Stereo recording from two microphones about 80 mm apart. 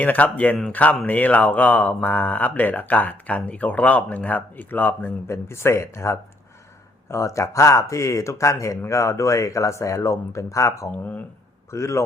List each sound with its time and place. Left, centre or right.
0.0 s speech: centre
5.3 s speech: left
10.9 s speech: centre
11.7 s speech: left